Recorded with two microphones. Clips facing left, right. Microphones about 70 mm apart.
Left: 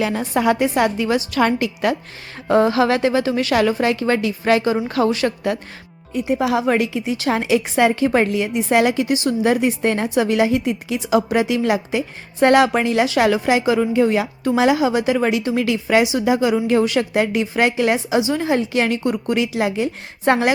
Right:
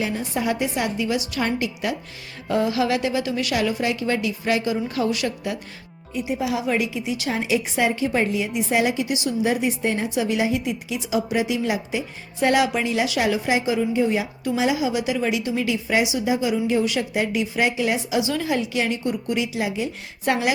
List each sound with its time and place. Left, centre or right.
0.2 s a woman's voice: left
2.5 s a woman's voice: left
5.1 s a woman's voice: left
7.3 s a woman's voice: left
18.2 s a woman's voice: left
18.8 s a woman's voice: left